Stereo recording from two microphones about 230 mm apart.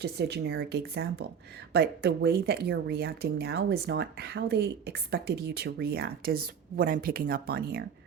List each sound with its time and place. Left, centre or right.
0.0 s speech: right